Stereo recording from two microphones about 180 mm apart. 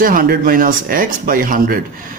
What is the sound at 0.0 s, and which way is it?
A man's voice, 50° right (ahead or behind).